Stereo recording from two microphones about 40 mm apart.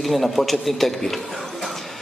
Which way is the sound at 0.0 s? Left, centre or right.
Centre.